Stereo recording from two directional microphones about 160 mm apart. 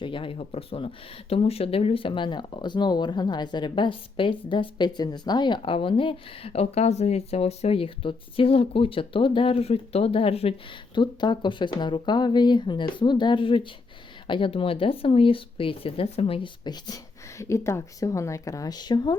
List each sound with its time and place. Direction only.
0.0 s speech: 30° left (ahead or behind)